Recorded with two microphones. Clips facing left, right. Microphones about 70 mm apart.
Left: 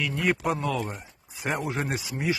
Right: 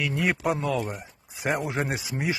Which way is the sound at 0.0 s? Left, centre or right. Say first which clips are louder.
Even; centre.